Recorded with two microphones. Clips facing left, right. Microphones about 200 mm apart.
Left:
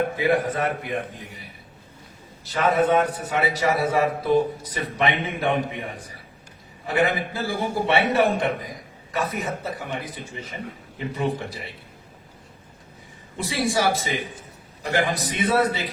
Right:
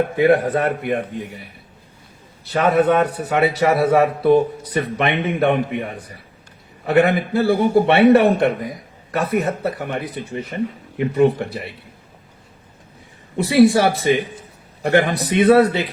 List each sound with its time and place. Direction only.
0.2 s a man's voice: 60° right (ahead or behind)
2.4 s a man's voice: 60° right (ahead or behind)
13.3 s a man's voice: 60° right (ahead or behind)